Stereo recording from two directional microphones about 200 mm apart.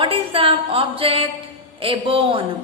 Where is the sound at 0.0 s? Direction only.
25° right (ahead or behind).